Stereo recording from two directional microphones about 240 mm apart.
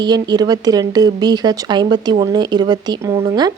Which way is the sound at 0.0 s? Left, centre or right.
Centre.